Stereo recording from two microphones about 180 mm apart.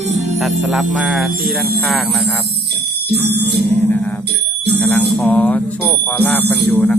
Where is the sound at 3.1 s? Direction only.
65° right (ahead or behind).